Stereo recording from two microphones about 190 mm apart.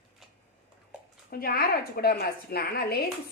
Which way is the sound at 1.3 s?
50° left (ahead or behind).